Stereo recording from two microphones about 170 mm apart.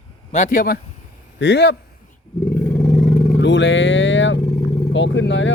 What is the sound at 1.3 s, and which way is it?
Speech, 90° left.